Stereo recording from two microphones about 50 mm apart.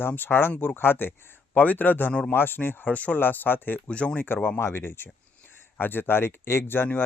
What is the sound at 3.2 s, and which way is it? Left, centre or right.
Speech, left.